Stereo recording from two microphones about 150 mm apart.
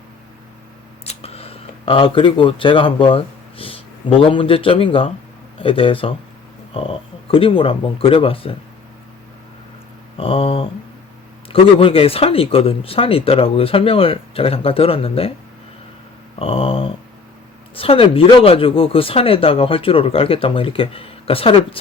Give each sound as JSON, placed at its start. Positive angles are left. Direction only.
{"t": 1.0, "sound": "a sound", "side_deg": 40}
{"t": 4.2, "sound": "speech", "side_deg": 35}
{"t": 10.2, "sound": "speech", "side_deg": 40}
{"t": 16.4, "sound": "speech", "side_deg": 40}